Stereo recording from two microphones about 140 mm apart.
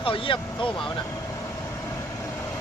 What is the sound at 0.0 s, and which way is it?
Speech, 40° left (ahead or behind).